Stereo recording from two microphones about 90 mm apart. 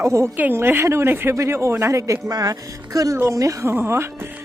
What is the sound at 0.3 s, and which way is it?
Speech, 25° right (ahead or behind).